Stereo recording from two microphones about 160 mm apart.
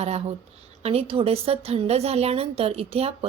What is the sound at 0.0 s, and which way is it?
A woman's voice, 40° right (ahead or behind).